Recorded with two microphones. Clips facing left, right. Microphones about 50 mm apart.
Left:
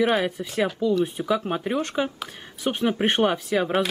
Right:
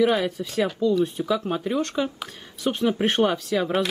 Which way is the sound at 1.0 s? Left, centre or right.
Centre.